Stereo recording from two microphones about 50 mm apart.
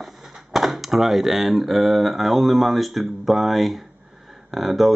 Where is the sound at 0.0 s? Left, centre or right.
Centre.